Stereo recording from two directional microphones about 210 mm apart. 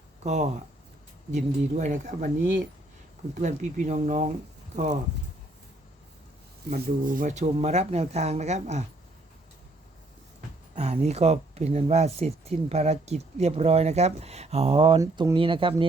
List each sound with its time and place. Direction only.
0.2 s speech: 30° right (ahead or behind)
3.3 s speech: 35° right (ahead or behind)
6.7 s speech: 40° right (ahead or behind)
10.8 s speech: 30° right (ahead or behind)